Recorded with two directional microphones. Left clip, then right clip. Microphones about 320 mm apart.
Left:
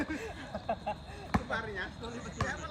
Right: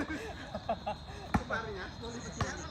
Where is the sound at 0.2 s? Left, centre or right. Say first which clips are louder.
Left 1 dB; centre.